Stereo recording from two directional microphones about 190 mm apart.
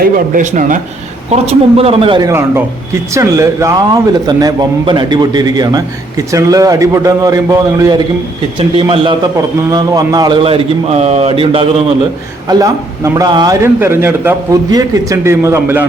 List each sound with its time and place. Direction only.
0.0 s speech: 45° right (ahead or behind)
1.3 s a man's voice: 30° right (ahead or behind)
3.2 s a man's voice: 15° right (ahead or behind)
12.5 s a man's voice: 20° right (ahead or behind)